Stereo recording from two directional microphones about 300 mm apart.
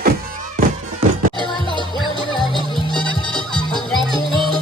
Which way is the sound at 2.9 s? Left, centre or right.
Centre.